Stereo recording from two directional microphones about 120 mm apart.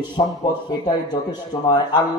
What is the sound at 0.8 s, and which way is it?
A man's voice, 35° left (ahead or behind).